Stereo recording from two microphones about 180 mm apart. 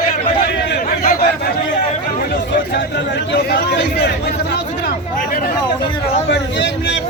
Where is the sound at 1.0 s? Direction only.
55° left (ahead or behind).